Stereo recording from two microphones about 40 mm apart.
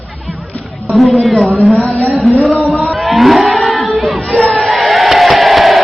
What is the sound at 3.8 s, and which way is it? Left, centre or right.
Choir, centre.